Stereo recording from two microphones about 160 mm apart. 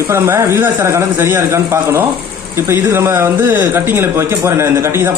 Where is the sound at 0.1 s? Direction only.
15° right (ahead or behind).